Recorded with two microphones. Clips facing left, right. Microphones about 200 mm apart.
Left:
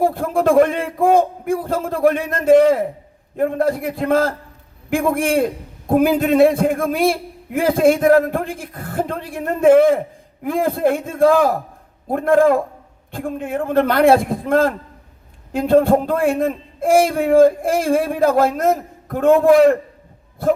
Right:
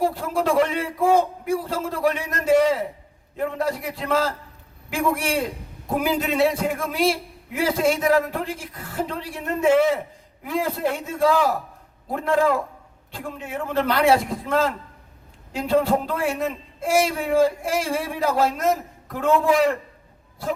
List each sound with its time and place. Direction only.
0.0 s a man's voice: 55° left (ahead or behind)